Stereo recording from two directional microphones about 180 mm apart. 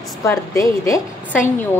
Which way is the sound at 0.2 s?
15° left (ahead or behind).